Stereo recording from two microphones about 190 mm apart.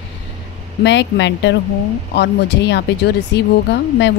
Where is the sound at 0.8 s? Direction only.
70° left (ahead or behind).